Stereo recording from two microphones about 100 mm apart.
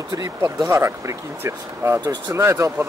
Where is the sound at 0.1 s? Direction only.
40° right (ahead or behind).